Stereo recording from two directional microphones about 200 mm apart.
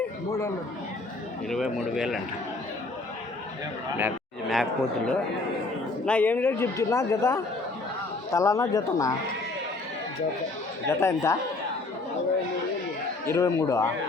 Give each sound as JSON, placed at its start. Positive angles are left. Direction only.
{"t": 0.3, "sound": "a man's voice", "side_deg": 15}
{"t": 2.0, "sound": "speech", "side_deg": 0}
{"t": 4.4, "sound": "a man's voice", "side_deg": 0}
{"t": 10.8, "sound": "a man's voice", "side_deg": 15}
{"t": 13.2, "sound": "a man's voice", "side_deg": 15}